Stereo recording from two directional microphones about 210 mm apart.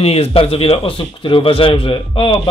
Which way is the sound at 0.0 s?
30° left (ahead or behind).